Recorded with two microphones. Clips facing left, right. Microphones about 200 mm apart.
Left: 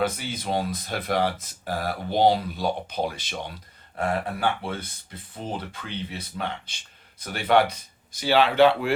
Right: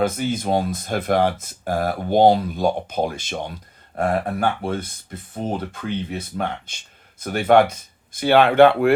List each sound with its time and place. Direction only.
0.0 s speech: 45° right (ahead or behind)